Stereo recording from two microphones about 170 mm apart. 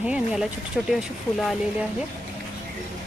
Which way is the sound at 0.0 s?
5° right (ahead or behind).